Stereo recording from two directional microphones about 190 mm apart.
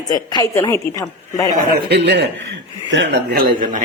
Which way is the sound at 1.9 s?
60° right (ahead or behind).